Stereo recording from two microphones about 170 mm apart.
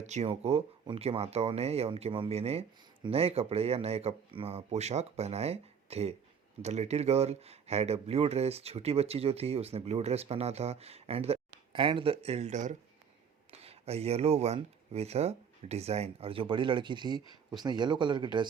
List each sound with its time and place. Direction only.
0.0 s speech: 40° right (ahead or behind)